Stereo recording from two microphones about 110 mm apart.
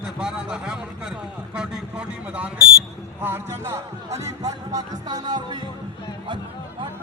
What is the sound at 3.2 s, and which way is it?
Speech, 20° right (ahead or behind).